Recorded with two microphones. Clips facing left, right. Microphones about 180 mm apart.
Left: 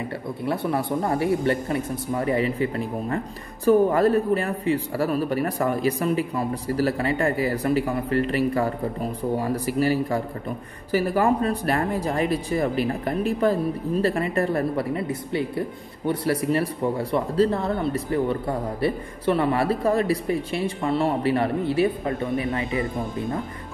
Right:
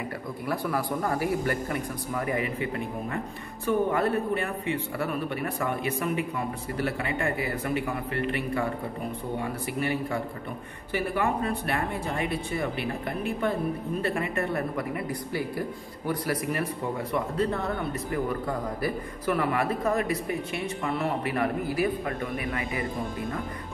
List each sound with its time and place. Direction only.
0.5 s a man's voice: 25° left (ahead or behind)